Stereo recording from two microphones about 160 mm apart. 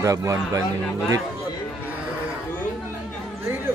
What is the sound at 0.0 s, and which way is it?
A man's voice, 20° right (ahead or behind).